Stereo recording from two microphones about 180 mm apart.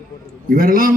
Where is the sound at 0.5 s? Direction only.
50° right (ahead or behind).